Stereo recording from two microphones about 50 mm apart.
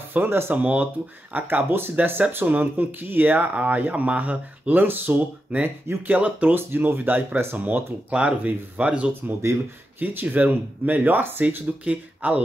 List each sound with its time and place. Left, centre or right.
0.1 s speech: right
0.6 s speech: right
1.3 s speech: right
6.5 s speech: right
9.9 s speech: right
11.6 s speech: right